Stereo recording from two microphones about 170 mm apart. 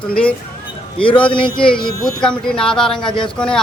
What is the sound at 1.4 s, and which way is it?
A man's voice, 5° left (ahead or behind).